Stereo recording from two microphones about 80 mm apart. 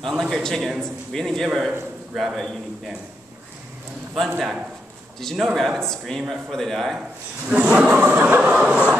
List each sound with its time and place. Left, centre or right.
0.0 s a man's voice: centre
4.2 s a man's voice: centre
7.0 s speech: centre